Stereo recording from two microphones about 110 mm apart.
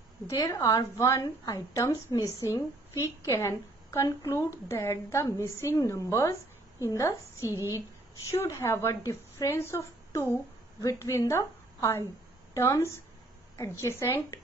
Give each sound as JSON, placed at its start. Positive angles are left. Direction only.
{"t": 0.3, "sound": "a woman's voice", "side_deg": 30}